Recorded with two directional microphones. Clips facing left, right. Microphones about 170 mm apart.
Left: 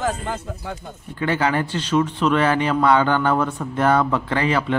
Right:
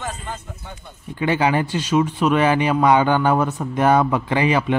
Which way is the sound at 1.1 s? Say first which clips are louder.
Right 2 dB; 15° right (ahead or behind).